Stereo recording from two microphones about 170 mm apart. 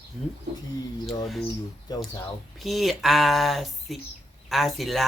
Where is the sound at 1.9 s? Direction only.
25° left (ahead or behind).